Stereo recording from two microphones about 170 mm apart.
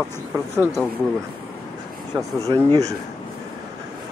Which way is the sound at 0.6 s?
Centre (ahead or behind).